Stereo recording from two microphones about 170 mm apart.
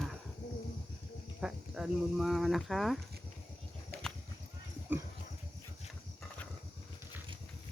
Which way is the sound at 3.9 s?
70° right (ahead or behind).